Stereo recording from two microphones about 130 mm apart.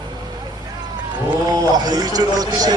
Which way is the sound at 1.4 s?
30° right (ahead or behind).